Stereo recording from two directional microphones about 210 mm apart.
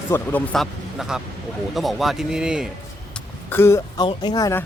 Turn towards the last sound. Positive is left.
turn(degrees=15)  # may be behind; listen again after turning